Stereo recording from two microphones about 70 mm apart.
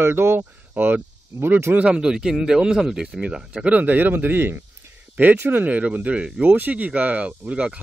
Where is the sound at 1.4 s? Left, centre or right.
Right.